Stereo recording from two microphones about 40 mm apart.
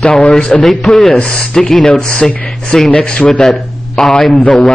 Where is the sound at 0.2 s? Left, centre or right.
Left.